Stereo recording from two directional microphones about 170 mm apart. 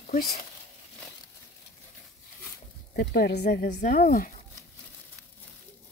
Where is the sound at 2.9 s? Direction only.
70° left (ahead or behind).